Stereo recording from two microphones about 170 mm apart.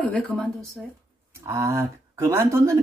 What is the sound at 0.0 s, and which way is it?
Speech, 10° left (ahead or behind).